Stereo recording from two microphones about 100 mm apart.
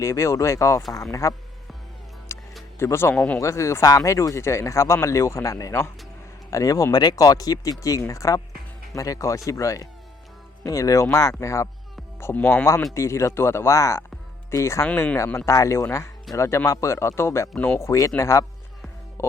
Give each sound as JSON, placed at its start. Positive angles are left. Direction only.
{"t": 0.0, "sound": "speech", "side_deg": 30}
{"t": 2.3, "sound": "music", "side_deg": 25}
{"t": 2.7, "sound": "speech", "side_deg": 25}
{"t": 3.2, "sound": "speech", "side_deg": 10}
{"t": 3.4, "sound": "speech", "side_deg": 30}
{"t": 15.4, "sound": "speech", "side_deg": 30}
{"t": 19.2, "sound": "music", "side_deg": 30}